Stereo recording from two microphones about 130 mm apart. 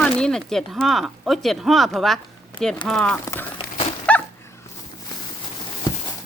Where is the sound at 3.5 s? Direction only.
45° left (ahead or behind).